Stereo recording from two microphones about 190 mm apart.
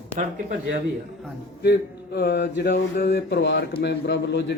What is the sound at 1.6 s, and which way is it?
Speech, 60° left (ahead or behind).